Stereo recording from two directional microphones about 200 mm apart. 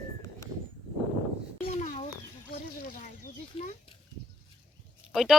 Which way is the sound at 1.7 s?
35° left (ahead or behind).